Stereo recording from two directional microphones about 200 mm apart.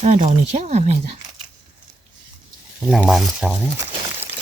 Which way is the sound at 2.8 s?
Centre (ahead or behind).